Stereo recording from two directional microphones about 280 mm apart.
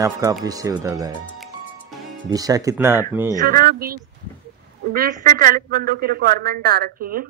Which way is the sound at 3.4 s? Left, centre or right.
Right.